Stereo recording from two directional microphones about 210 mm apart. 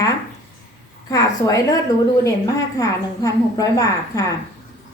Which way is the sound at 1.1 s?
15° left (ahead or behind).